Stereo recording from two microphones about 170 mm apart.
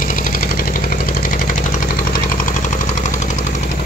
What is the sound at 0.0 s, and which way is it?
Engine, 55° left (ahead or behind).